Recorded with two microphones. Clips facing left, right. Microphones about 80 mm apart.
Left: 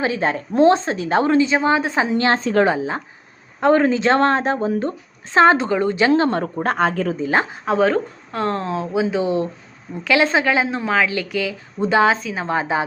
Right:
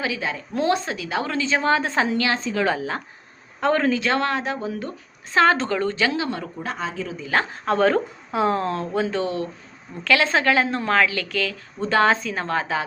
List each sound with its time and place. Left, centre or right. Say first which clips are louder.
0.0 s a woman's voice: left 6 dB; left
0.5 s a woman's voice: left 8 dB; left
2.1 s a woman's voice: left 6 dB; left
2.6 s a woman's voice: left 4 dB; left
6.1 s a woman's voice: left 9 dB; left
7.2 s a woman's voice: left 2 dB; left
7.6 s a woman's voice: right 1 dB; centre
12.5 s a woman's voice: left 4 dB; left